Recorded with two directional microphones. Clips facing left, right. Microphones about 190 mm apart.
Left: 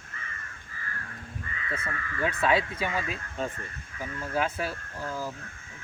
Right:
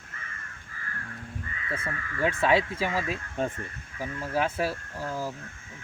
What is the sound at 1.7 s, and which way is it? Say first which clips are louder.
Speech: right 1 dB; 25° right (ahead or behind).